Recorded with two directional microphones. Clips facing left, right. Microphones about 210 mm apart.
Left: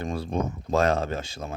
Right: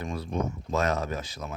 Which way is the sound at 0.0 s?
30° left (ahead or behind).